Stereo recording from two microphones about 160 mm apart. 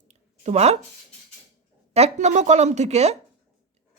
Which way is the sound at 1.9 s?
40° right (ahead or behind).